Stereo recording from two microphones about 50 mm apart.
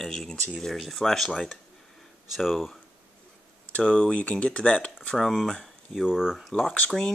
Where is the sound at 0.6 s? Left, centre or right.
Centre.